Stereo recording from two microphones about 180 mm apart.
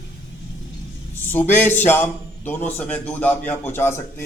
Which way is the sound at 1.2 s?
10° left (ahead or behind).